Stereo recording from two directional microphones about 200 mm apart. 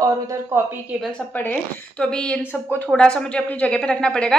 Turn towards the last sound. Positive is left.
turn(degrees=5)  # may be behind; listen again after turning